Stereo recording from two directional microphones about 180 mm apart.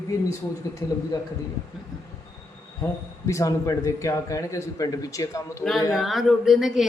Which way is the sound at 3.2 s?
15° left (ahead or behind).